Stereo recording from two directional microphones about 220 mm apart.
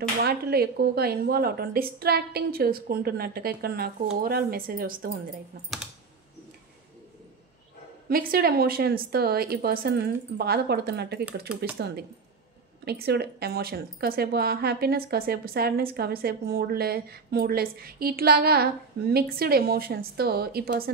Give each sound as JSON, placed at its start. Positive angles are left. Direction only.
{"t": 0.2, "sound": "speech", "side_deg": -45}
{"t": 8.1, "sound": "speech", "side_deg": -40}